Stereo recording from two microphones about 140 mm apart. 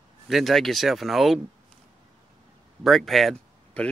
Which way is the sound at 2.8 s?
Centre (ahead or behind).